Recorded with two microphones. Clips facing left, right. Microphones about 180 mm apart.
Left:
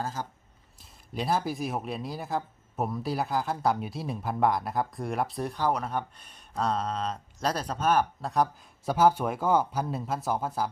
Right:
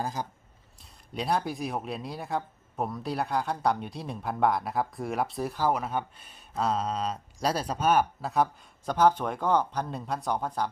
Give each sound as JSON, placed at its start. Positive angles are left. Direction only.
{"t": 0.0, "sound": "speech", "side_deg": -15}
{"t": 0.8, "sound": "speech", "side_deg": 0}